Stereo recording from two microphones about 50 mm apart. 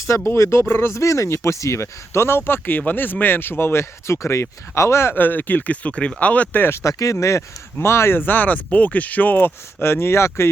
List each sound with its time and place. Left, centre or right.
0.3 s speech: left
3.6 s speech: left
5.1 s speech: left
6.7 s speech: left
9.8 s speech: left